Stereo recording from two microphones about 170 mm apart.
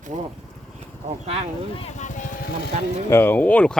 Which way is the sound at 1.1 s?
35° right (ahead or behind).